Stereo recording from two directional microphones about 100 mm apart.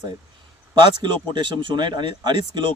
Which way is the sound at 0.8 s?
50° right (ahead or behind).